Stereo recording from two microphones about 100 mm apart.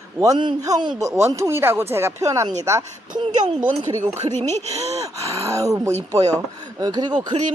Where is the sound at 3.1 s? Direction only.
45° right (ahead or behind).